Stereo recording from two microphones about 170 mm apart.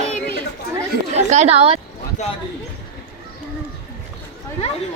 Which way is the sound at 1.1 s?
40° right (ahead or behind).